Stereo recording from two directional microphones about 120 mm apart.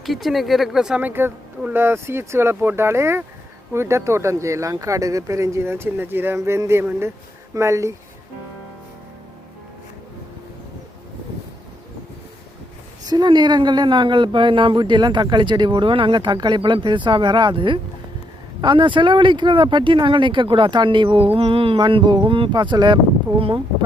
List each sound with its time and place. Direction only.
0.0 s speech: centre (ahead or behind); by 7.9 s 25° right (ahead or behind)
13.1 s speech: 35° right (ahead or behind)